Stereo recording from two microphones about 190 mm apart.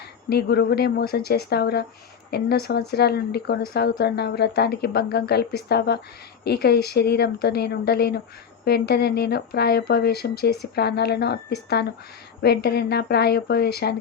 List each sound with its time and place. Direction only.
0.3 s speech: 60° left (ahead or behind)